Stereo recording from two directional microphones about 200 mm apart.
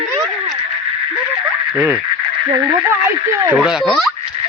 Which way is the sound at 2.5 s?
20° right (ahead or behind).